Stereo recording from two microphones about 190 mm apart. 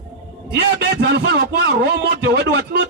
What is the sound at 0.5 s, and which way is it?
A man's voice, 60° right (ahead or behind).